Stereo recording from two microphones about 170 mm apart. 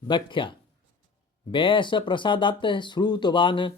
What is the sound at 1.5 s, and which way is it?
Speech, 30° left (ahead or behind).